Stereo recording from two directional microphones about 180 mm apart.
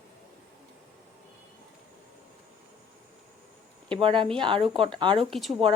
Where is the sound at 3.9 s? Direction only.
25° right (ahead or behind).